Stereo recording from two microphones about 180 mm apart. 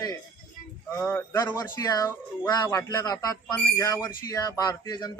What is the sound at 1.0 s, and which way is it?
Speech, 15° left (ahead or behind).